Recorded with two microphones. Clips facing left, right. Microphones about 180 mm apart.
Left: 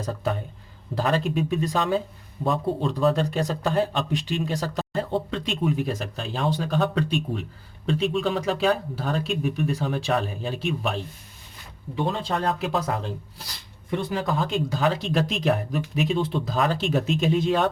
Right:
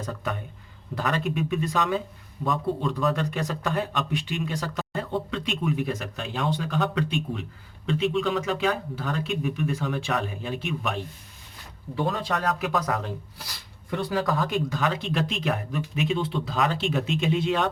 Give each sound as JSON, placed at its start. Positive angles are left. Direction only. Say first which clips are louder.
{"t": 0.0, "sound": "speech", "louder": "left 4 dB", "side_deg": 30}